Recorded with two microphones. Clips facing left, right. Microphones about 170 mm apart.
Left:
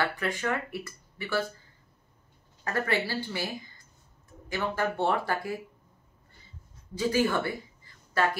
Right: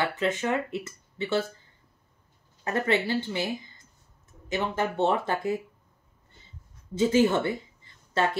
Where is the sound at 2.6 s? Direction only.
20° right (ahead or behind).